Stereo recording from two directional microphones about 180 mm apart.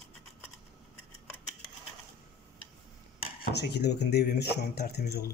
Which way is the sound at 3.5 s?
65° left (ahead or behind).